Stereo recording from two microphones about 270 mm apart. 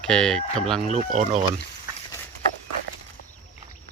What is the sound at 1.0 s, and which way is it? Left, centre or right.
Speech, right.